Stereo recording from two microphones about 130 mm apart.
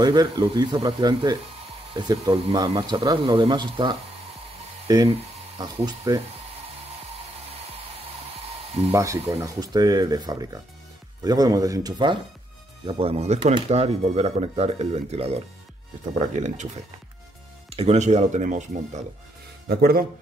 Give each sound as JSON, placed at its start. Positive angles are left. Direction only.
{"t": 0.0, "sound": "speech", "side_deg": -35}
{"t": 8.9, "sound": "speech", "side_deg": -25}
{"t": 12.8, "sound": "speech", "side_deg": -45}
{"t": 16.3, "sound": "speech", "side_deg": -65}
{"t": 17.6, "sound": "speech", "side_deg": -50}